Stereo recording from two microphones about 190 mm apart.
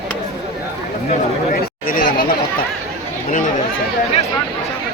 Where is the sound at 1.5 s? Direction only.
45° left (ahead or behind).